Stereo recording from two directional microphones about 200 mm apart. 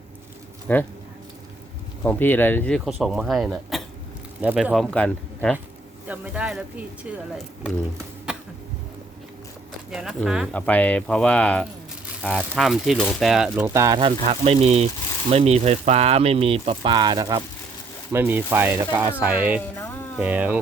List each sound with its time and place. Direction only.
0.7 s speech: 10° left (ahead or behind)
2.0 s speech: 10° left (ahead or behind)
6.1 s speech: 5° right (ahead or behind)
8.3 s a sound: 5° right (ahead or behind)
9.9 s speech: centre (ahead or behind)